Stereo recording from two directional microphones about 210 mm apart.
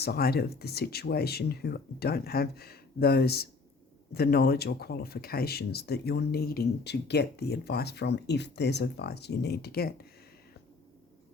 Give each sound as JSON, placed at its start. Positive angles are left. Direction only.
{"t": 0.0, "sound": "speech", "side_deg": 45}